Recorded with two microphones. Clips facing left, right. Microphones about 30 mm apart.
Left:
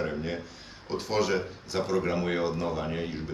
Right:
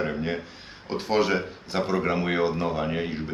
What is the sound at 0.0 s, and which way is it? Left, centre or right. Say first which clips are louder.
Speech: right 4 dB; right.